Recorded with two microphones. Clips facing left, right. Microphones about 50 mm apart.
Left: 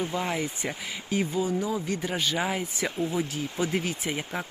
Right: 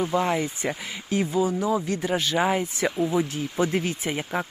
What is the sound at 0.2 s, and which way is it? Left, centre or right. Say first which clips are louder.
Speech: right 5 dB; centre.